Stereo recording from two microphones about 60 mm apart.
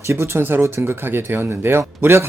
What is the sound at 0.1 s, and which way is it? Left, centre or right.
Speech, right.